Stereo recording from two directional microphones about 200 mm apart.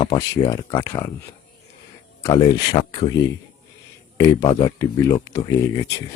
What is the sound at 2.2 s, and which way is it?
Speech, 20° left (ahead or behind).